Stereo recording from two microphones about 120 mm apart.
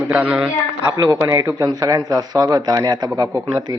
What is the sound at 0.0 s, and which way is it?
Speech, 10° right (ahead or behind).